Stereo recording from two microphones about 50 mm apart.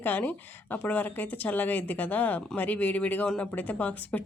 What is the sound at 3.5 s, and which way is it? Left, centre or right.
Speech, left.